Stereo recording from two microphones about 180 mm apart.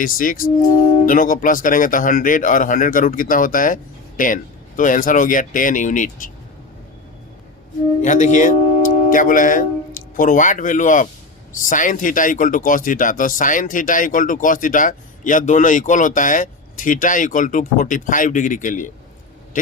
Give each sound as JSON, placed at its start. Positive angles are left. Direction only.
{"t": 0.0, "sound": "speech", "side_deg": 50}
{"t": 4.8, "sound": "speech", "side_deg": 45}
{"t": 8.0, "sound": "speech", "side_deg": 40}